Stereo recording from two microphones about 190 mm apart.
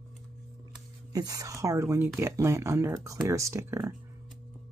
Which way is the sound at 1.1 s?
20° right (ahead or behind).